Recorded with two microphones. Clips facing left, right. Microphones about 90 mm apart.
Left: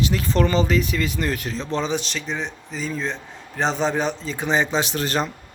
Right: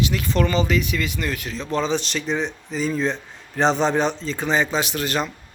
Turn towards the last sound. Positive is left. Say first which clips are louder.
# left 1 dB
turn(degrees=35)  # may be behind; listen again after turning